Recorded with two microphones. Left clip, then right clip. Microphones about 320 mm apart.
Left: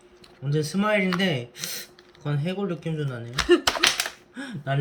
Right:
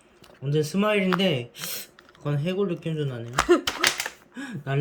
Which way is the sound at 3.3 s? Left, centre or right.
Centre.